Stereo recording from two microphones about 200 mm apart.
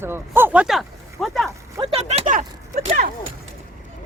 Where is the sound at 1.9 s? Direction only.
30° right (ahead or behind).